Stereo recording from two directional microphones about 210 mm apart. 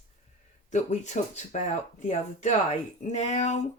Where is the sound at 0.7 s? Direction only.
35° left (ahead or behind).